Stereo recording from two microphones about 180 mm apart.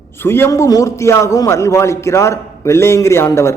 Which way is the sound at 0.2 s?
15° left (ahead or behind).